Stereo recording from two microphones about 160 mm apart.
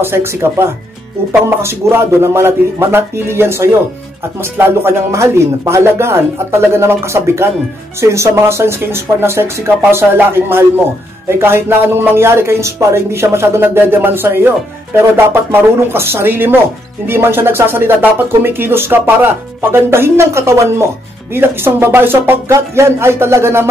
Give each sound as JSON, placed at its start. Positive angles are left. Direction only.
{"t": 0.0, "sound": "speech", "side_deg": -15}